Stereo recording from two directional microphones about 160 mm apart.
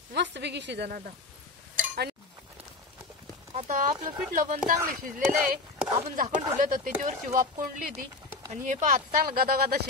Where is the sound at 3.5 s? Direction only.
50° right (ahead or behind).